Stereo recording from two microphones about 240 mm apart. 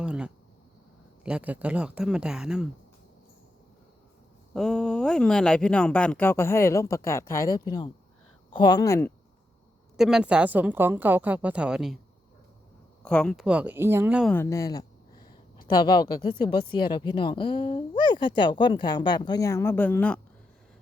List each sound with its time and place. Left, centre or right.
0.0 s a sound: centre
1.2 s speech: centre
4.5 s speech: centre
10.0 s a woman's voice: centre
13.0 s speech: centre
14.3 s speech: centre